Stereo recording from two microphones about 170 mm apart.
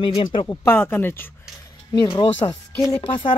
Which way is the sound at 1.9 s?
25° left (ahead or behind).